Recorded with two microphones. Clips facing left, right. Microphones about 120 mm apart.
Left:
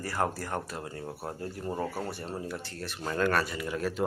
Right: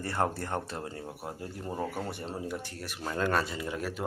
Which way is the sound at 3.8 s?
10° right (ahead or behind).